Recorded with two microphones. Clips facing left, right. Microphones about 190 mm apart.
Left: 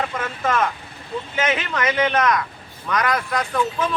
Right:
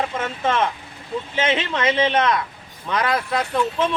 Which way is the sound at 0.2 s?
25° right (ahead or behind).